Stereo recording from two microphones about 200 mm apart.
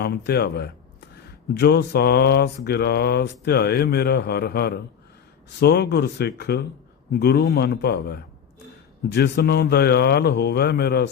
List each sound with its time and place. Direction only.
0.0 s speech: 55° left (ahead or behind)
1.5 s mantra: 55° left (ahead or behind)
5.5 s speech: 55° left (ahead or behind)
7.1 s mantra: 50° left (ahead or behind)